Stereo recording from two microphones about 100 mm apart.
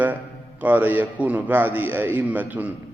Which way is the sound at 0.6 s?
20° right (ahead or behind).